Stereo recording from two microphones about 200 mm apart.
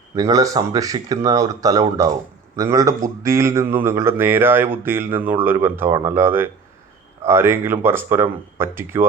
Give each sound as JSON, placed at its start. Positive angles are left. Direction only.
{"t": 0.2, "sound": "a man's voice", "side_deg": -15}